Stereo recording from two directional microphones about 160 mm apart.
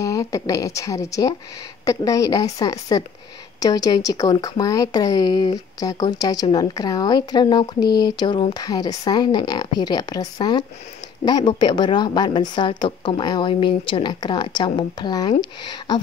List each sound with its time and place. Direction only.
0.0 s a woman's voice: 20° left (ahead or behind)